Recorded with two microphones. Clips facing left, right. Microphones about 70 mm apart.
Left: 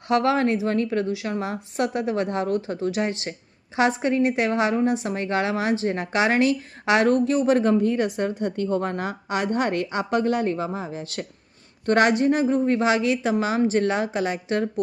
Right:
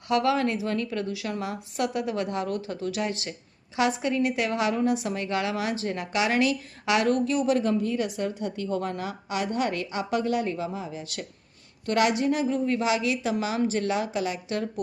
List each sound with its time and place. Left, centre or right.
0.1 s a woman's voice: left